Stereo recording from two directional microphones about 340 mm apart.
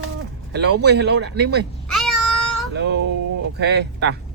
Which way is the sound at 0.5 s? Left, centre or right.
Right.